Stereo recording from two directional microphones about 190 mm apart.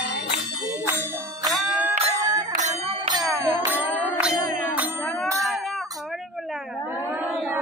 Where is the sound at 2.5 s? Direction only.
35° right (ahead or behind).